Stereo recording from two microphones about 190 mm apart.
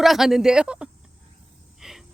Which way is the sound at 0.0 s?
Centre (ahead or behind).